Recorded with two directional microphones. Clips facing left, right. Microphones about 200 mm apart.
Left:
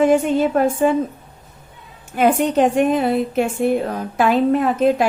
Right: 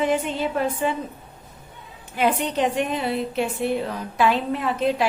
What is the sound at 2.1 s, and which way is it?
A woman's voice, 45° left (ahead or behind).